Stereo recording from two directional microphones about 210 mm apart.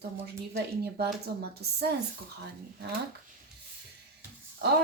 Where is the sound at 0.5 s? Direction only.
50° right (ahead or behind).